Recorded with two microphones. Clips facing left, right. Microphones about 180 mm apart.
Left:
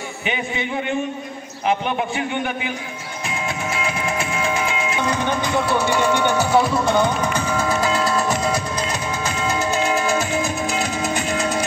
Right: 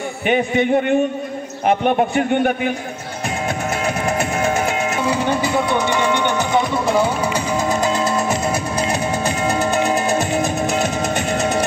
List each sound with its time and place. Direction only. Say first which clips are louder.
0.3 s a man's voice: right 10 dB; 50° right (ahead or behind)
3.3 s music: right 4 dB; 45° right (ahead or behind)
5.0 s speech: right 3 dB; 10° right (ahead or behind)
7.3 s music: right 2 dB; 15° right (ahead or behind)
9.2 s music: right 4 dB; 60° right (ahead or behind)